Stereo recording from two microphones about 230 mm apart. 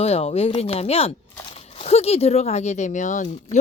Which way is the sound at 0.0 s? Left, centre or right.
Left.